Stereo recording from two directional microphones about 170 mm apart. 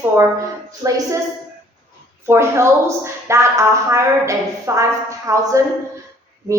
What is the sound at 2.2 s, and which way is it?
Speech, 15° right (ahead or behind).